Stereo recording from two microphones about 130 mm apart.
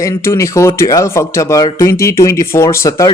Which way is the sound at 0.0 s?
20° left (ahead or behind).